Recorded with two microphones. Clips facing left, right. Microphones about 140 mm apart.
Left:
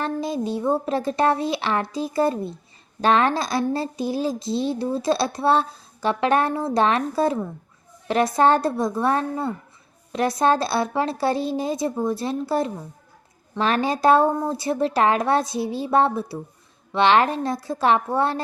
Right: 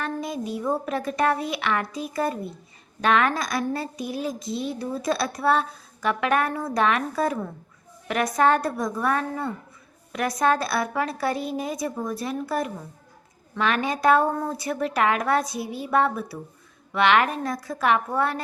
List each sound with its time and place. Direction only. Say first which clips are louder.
0.0 s speech: left 4 dB; 30° left (ahead or behind)